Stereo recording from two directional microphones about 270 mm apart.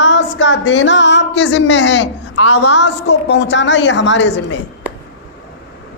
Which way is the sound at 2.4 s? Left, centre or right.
Left.